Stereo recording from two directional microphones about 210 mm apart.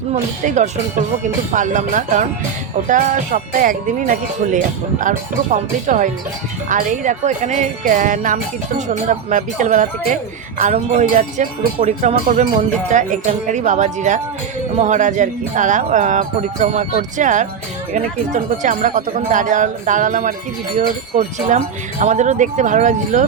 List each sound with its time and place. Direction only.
0.1 s speech: 35° right (ahead or behind)